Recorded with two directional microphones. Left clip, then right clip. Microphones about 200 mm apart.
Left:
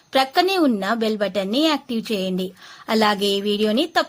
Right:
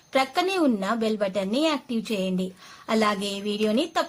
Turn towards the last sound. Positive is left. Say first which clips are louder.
# left 5 dB
turn(degrees=30)  # may be behind; listen again after turning